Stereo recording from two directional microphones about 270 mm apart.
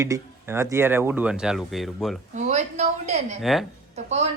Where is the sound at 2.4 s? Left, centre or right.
Right.